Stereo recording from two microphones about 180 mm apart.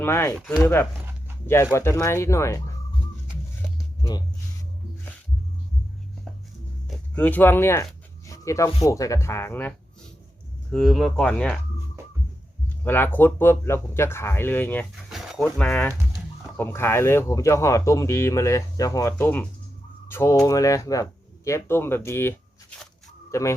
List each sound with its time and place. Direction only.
0.0 s speech: 15° left (ahead or behind)
0.3 s speech: centre (ahead or behind)
1.7 s speech: 15° left (ahead or behind)
6.8 s speech: 10° left (ahead or behind)
12.6 s speech: 10° left (ahead or behind)
15.1 s speech: centre (ahead or behind); by 23.6 s 15° left (ahead or behind)